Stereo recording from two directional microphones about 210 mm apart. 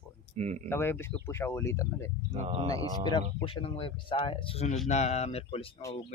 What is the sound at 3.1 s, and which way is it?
Speech, 20° left (ahead or behind).